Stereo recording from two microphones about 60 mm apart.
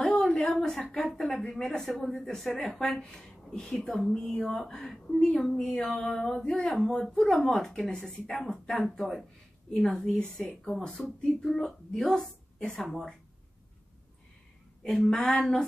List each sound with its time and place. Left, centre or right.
0.0 s a sound: centre
1.1 s speech: centre
7.3 s speech: centre
14.8 s speech: centre